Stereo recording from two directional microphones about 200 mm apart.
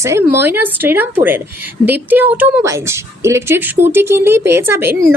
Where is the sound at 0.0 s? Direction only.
15° right (ahead or behind).